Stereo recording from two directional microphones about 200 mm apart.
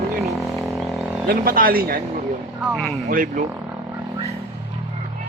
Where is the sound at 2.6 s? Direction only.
Centre (ahead or behind).